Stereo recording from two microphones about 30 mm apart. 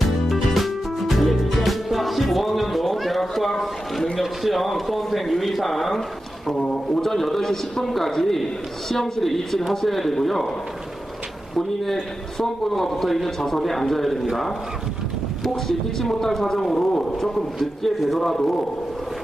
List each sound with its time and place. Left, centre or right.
0.3 s music: centre
4.2 s speech: centre
11.5 s speech: centre
15.4 s speech: centre